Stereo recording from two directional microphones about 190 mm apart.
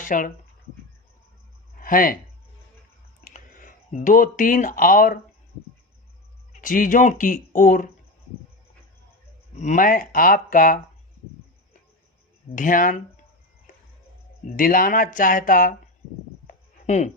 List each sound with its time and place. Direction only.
0.0 s speech: 45° left (ahead or behind)
1.8 s speech: 45° left (ahead or behind)
3.3 s speech: 45° left (ahead or behind)
6.5 s speech: 45° left (ahead or behind)
9.6 s speech: 40° left (ahead or behind)
12.5 s speech: 45° left (ahead or behind)
13.7 s music: 45° left (ahead or behind)
14.5 s speech: 45° left (ahead or behind)
16.8 s speech: 40° left (ahead or behind)